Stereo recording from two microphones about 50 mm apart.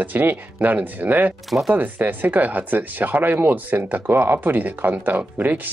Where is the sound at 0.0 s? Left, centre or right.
Right.